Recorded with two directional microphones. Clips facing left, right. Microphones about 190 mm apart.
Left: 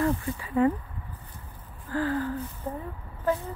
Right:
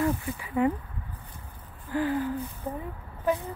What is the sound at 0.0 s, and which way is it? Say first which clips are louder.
Speech: left 1 dB; 10° right (ahead or behind).